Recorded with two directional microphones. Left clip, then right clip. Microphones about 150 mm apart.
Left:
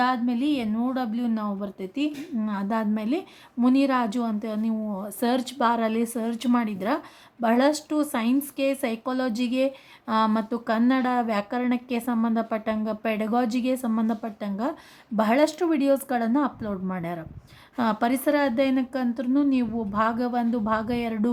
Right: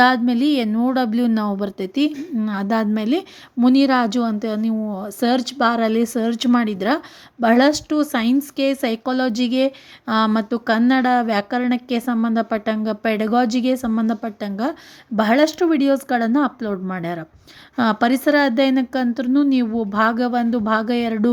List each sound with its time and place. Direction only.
0.0 s a woman's voice: 40° right (ahead or behind)